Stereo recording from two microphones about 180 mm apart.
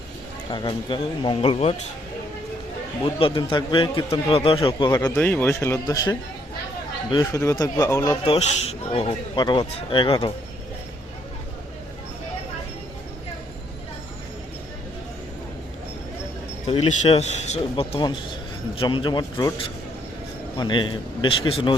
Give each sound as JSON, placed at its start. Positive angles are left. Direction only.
{"t": 0.5, "sound": "speech", "side_deg": 25}
{"t": 3.0, "sound": "speech", "side_deg": 30}
{"t": 4.9, "sound": "speech", "side_deg": 15}
{"t": 8.2, "sound": "speech", "side_deg": 35}
{"t": 16.6, "sound": "a man's voice", "side_deg": 35}
{"t": 20.6, "sound": "speech", "side_deg": 25}